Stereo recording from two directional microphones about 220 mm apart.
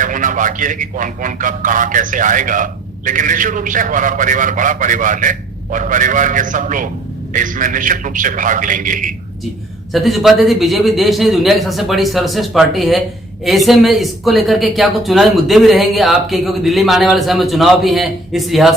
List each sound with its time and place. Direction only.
0.0 s a man's voice: 35° right (ahead or behind)
9.9 s speech: centre (ahead or behind)